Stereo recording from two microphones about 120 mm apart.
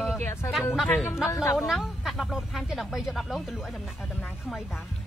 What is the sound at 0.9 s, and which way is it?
Speech, 15° left (ahead or behind).